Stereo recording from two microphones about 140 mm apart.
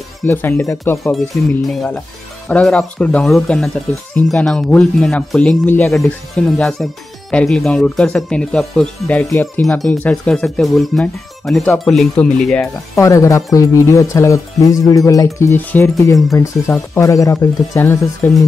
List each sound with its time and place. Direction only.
0.3 s speech: 15° left (ahead or behind)
1.1 s speech: centre (ahead or behind)
12.9 s speech: 20° left (ahead or behind)